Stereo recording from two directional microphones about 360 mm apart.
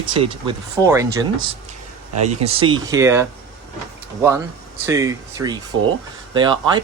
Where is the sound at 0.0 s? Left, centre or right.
Centre.